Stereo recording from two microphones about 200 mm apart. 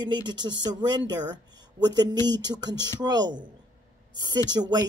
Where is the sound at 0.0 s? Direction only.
20° right (ahead or behind).